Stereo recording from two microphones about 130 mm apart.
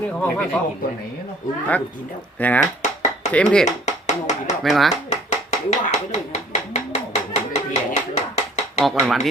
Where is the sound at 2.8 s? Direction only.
65° left (ahead or behind).